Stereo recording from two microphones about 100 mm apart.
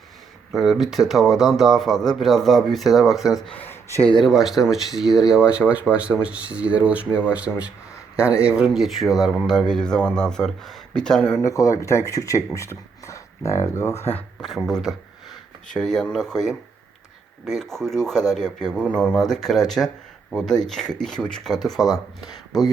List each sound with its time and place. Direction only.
0.5 s speech: 5° right (ahead or behind)
3.5 s a sound: 20° left (ahead or behind)
4.2 s speech: centre (ahead or behind)
11.3 s speech: 35° left (ahead or behind)
14.4 s speech: centre (ahead or behind)